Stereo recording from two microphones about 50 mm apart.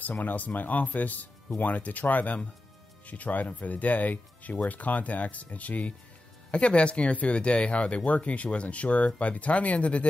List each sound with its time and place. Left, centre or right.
0.0 s speech: left